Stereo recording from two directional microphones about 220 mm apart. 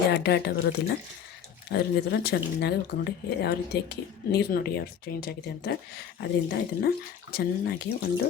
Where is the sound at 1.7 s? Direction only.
45° left (ahead or behind).